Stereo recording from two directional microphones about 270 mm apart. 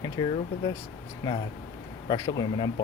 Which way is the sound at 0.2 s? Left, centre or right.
Centre.